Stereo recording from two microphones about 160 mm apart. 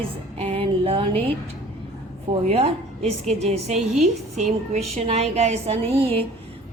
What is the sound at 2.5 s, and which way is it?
A woman's voice, 40° right (ahead or behind).